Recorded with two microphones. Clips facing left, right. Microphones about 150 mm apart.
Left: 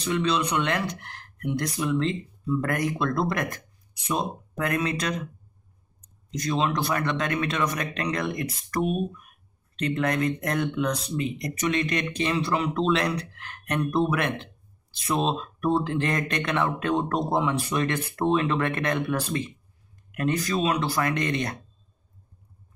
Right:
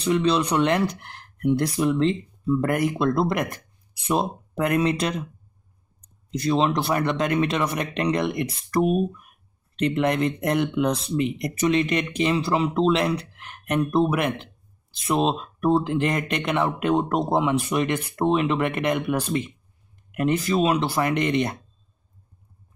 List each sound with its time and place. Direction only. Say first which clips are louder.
0.0 s speech: right 4 dB; 30° right (ahead or behind)
15.3 s speech: right 3 dB; 25° right (ahead or behind)